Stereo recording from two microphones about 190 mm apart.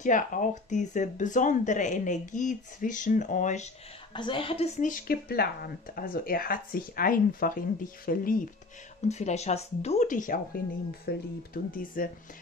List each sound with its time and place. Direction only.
0.0 s speech: 45° left (ahead or behind)
4.1 s speech: 25° left (ahead or behind); by 8.5 s 50° left (ahead or behind)
9.1 s speech: 35° left (ahead or behind)